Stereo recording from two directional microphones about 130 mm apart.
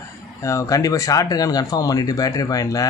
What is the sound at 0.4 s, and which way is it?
Speech, 25° left (ahead or behind).